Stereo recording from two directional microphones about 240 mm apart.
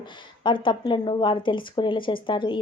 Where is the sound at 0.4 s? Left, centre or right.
Centre.